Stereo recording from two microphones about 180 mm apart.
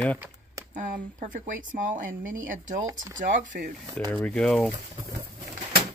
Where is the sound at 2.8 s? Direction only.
20° right (ahead or behind).